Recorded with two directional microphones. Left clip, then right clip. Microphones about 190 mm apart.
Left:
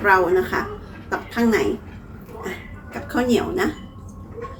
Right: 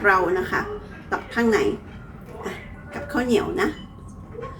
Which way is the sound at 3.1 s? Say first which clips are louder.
Left 1 dB; centre (ahead or behind).